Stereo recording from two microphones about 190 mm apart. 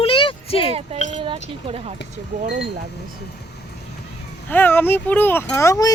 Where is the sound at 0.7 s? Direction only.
30° right (ahead or behind).